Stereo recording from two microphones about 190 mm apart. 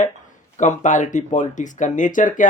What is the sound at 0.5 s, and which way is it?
Speech, 40° left (ahead or behind).